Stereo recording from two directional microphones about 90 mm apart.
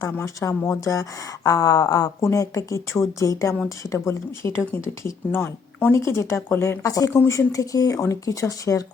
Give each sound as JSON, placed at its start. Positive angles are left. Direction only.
{"t": 0.0, "sound": "speech", "side_deg": 35}